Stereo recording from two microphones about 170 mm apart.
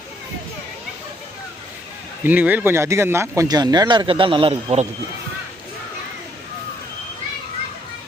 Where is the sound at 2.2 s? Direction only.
10° right (ahead or behind); by 4.9 s 35° right (ahead or behind).